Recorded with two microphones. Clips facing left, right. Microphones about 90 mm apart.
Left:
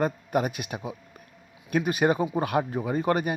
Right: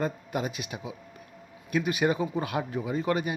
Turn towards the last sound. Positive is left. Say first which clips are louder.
# left 3 dB
turn(degrees=45)  # may be behind; listen again after turning